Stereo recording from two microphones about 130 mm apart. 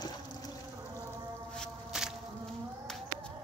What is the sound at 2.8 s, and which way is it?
Music, 5° left (ahead or behind).